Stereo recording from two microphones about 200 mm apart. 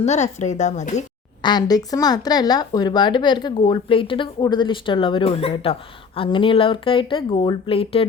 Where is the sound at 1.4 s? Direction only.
20° left (ahead or behind).